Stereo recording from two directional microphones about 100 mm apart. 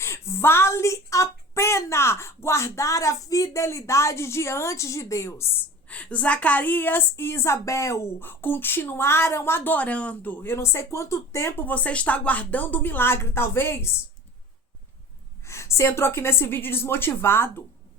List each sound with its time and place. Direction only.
0.0 s a woman's voice: 25° left (ahead or behind)
5.9 s a woman's voice: 15° left (ahead or behind)
15.4 s a woman's voice: 30° left (ahead or behind)